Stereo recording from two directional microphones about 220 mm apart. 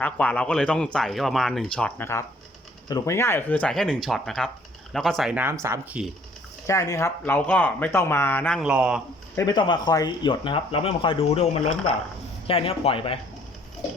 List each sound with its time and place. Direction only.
0.0 s speech: 5° left (ahead or behind)
6.7 s speech: 15° left (ahead or behind); by 9.0 s 5° right (ahead or behind)
9.3 s speech: 15° left (ahead or behind)